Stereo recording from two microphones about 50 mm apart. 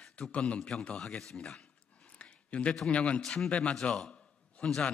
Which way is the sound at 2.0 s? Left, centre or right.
Left.